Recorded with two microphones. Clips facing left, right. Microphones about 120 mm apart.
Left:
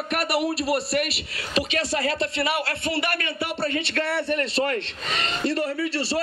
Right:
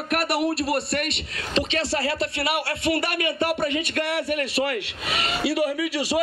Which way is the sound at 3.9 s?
15° right (ahead or behind).